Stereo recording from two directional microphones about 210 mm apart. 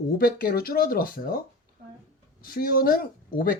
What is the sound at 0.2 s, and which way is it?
Speech, 45° left (ahead or behind).